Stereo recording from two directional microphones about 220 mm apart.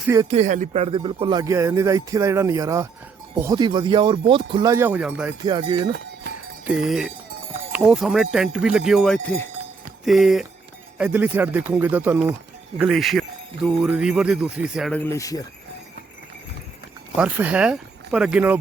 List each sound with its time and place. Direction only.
0.0 s speech: 10° right (ahead or behind)
0.3 s speech: 30° right (ahead or behind); by 5.3 s 5° right (ahead or behind)
5.4 s speech: 20° right (ahead or behind)
6.7 s speech: centre (ahead or behind); by 15.4 s 15° left (ahead or behind)
17.2 s speech: 5° right (ahead or behind)